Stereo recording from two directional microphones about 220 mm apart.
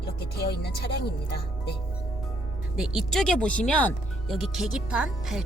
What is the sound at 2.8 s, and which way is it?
Speech, centre (ahead or behind).